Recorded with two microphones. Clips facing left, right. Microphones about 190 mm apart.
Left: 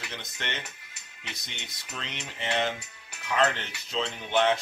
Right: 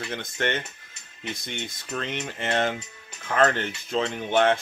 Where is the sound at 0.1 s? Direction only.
50° right (ahead or behind).